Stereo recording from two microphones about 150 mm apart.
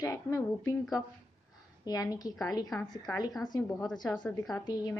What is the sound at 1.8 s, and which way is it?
A woman's voice, 25° left (ahead or behind).